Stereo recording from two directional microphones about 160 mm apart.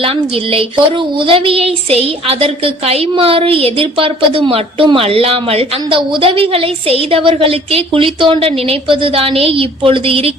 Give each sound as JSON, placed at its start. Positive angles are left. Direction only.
{"t": 0.0, "sound": "speech", "side_deg": -35}